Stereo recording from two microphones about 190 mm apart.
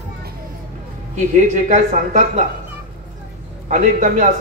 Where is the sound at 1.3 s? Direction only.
40° right (ahead or behind).